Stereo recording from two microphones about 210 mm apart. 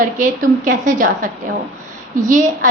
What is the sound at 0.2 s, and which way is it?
A woman's voice, 35° right (ahead or behind).